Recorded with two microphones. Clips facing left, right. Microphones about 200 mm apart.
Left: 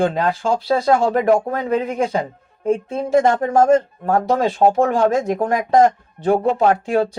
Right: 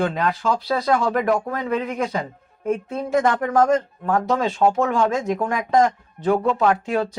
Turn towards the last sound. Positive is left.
turn(degrees=30)  # may be behind; listen again after turning